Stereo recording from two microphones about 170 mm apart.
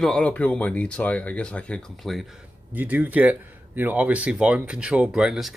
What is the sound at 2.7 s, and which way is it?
Speech, 10° right (ahead or behind).